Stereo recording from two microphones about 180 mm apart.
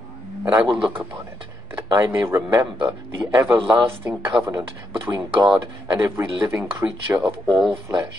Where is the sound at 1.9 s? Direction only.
20° right (ahead or behind).